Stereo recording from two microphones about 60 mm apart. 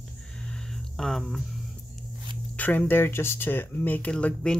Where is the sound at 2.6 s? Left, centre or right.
Left.